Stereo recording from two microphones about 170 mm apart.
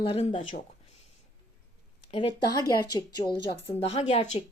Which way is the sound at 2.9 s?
25° left (ahead or behind).